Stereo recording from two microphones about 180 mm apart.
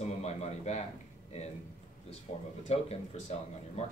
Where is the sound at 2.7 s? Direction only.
35° left (ahead or behind).